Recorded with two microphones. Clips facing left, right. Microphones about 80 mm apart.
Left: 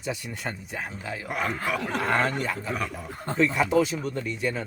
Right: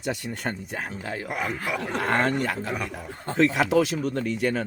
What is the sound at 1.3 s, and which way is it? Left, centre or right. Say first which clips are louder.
Speech: left 2 dB; centre.